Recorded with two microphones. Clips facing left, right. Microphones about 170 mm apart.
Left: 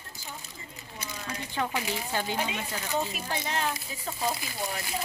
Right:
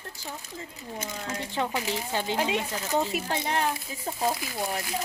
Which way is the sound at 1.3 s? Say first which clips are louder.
Right 2 dB; 25° right (ahead or behind).